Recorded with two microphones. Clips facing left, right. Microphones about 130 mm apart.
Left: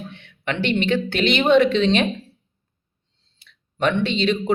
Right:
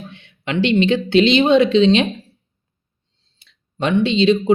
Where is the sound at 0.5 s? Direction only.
15° right (ahead or behind).